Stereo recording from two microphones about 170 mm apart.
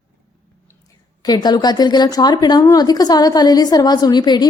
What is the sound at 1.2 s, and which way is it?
Speech, 25° left (ahead or behind).